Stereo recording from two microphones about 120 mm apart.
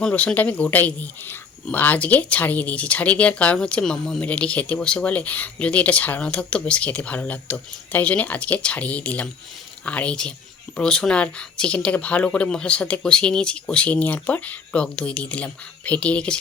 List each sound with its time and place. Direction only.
0.0 s speech: 10° left (ahead or behind)